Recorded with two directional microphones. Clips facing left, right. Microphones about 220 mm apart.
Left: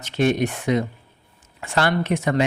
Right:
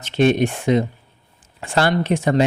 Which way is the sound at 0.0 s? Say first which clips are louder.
Right 4 dB; 25° right (ahead or behind).